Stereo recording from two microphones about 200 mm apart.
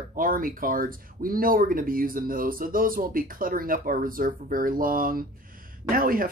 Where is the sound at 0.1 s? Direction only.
45° right (ahead or behind).